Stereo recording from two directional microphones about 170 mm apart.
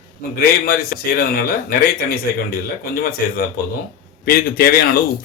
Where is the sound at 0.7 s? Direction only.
65° left (ahead or behind).